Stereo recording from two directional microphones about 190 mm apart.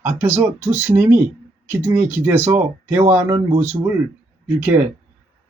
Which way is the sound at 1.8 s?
40° right (ahead or behind).